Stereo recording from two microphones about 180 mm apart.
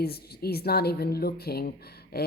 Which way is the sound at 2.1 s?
60° left (ahead or behind).